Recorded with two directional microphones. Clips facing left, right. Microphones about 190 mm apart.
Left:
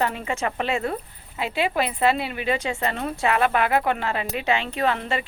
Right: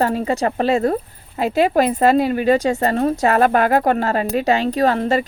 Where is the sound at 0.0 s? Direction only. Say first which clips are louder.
Right 7 dB; 40° right (ahead or behind).